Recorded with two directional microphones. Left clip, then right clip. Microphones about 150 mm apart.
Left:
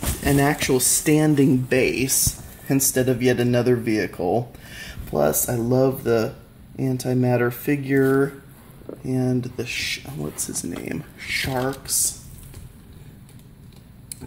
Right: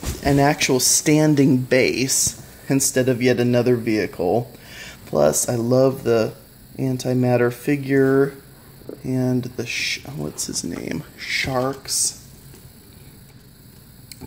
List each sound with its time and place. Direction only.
0.2 s speech: 30° right (ahead or behind)